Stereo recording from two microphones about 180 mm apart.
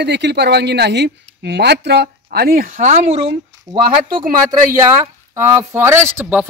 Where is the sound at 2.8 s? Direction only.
40° right (ahead or behind).